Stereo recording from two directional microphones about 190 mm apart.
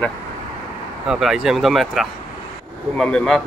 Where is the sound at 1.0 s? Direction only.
5° right (ahead or behind).